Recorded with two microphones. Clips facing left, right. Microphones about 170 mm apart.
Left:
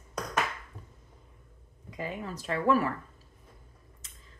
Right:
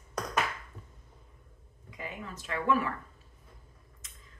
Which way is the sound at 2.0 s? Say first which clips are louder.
Left 5 dB; 35° left (ahead or behind).